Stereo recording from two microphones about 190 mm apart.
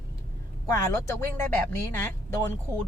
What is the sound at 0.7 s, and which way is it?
Speech, 15° left (ahead or behind).